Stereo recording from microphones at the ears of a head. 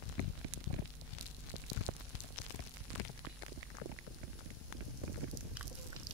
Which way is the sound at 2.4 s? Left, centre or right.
Left.